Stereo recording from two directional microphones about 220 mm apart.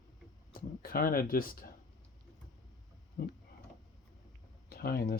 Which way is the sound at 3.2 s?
40° left (ahead or behind).